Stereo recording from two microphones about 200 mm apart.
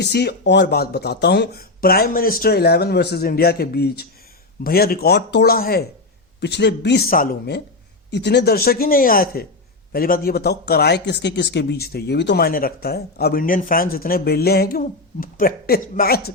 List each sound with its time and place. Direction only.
0.0 s speech: 55° left (ahead or behind)